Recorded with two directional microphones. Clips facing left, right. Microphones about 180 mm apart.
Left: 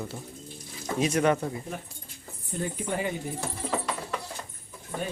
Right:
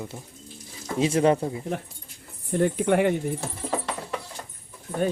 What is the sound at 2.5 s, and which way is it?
Speech, 70° right (ahead or behind).